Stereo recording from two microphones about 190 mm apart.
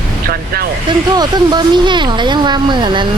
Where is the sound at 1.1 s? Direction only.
20° right (ahead or behind).